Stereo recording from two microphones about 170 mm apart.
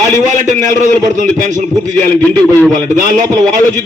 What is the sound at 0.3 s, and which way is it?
A man's voice, 45° right (ahead or behind).